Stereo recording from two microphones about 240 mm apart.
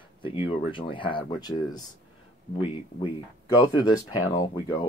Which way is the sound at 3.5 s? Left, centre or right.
Centre.